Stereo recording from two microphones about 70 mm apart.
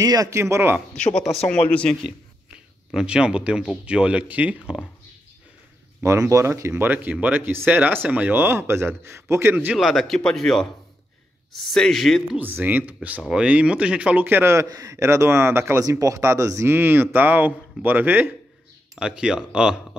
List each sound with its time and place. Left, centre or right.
0.0 s speech: right
0.3 s speech: right
1.5 s speech: centre
2.5 s speech: centre
6.0 s speech: right
6.7 s speech: right
8.4 s speech: right
9.8 s speech: centre
12.4 s speech: right
14.2 s speech: right
14.7 s speech: right
15.8 s speech: right
16.7 s speech: right
18.9 s speech: centre